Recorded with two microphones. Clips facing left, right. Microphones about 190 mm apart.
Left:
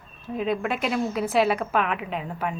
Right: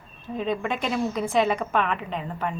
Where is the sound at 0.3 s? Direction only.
5° left (ahead or behind).